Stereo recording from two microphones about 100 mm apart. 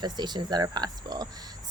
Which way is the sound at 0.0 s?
45° right (ahead or behind).